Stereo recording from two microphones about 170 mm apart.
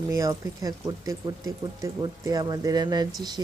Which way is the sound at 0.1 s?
20° right (ahead or behind).